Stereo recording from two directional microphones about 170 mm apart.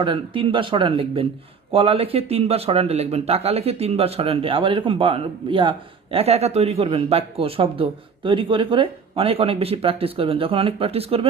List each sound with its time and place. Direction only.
0.0 s speech: 30° right (ahead or behind)